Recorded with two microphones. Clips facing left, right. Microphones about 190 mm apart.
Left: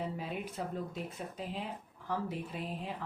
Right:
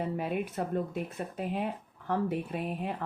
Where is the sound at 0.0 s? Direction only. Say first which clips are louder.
Right 6 dB; 60° right (ahead or behind).